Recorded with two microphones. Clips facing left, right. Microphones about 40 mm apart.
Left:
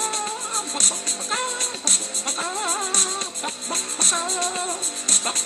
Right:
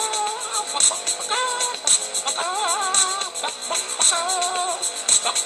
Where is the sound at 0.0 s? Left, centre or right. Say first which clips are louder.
Right 3 dB; right.